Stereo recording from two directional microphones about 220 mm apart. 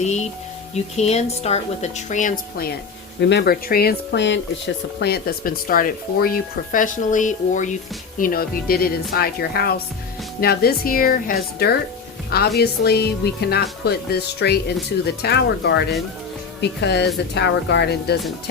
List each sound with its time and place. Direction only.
0.0 s a woman's voice: 30° left (ahead or behind)
3.2 s a woman's voice: 50° left (ahead or behind)